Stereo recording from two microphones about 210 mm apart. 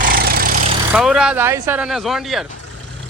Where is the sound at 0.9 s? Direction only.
5° right (ahead or behind).